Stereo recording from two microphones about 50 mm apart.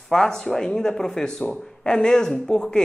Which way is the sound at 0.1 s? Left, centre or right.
Centre.